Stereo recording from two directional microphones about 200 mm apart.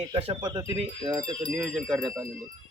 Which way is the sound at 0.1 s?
30° right (ahead or behind).